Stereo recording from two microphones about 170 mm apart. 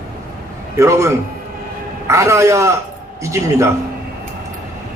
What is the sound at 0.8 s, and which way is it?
A man's voice, 15° right (ahead or behind).